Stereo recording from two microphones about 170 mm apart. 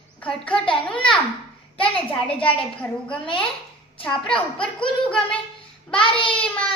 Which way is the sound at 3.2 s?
30° left (ahead or behind).